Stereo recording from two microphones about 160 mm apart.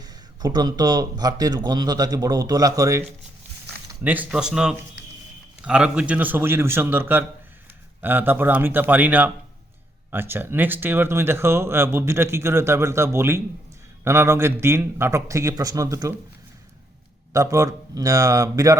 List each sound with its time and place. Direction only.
0.0 s a man's voice: 25° right (ahead or behind)
4.0 s speech: 10° right (ahead or behind)
17.3 s a man's voice: 20° right (ahead or behind)